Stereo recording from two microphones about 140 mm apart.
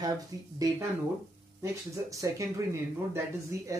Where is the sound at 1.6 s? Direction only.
20° right (ahead or behind).